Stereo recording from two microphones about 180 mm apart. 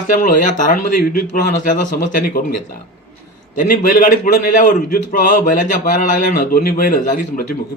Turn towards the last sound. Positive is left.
turn(degrees=50)  # may be behind; listen again after turning